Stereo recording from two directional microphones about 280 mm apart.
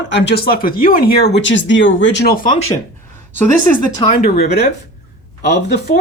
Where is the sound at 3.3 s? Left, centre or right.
Centre.